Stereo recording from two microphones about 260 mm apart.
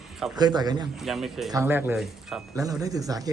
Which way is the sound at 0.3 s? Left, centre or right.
Centre.